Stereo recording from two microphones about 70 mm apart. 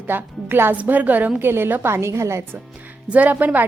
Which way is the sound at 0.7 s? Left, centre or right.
Right.